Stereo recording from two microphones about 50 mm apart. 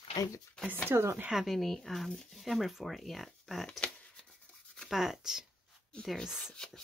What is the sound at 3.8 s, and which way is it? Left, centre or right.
Shuffling cards, centre.